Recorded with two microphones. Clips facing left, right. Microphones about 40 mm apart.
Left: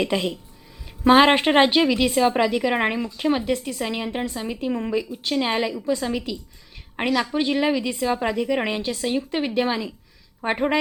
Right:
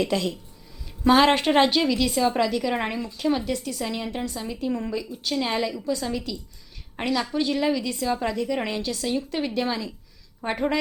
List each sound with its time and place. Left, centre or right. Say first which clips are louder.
0.0 s a woman's voice: left 1 dB; left